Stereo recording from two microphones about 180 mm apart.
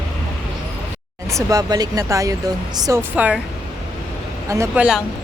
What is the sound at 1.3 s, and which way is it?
Speech, 20° right (ahead or behind).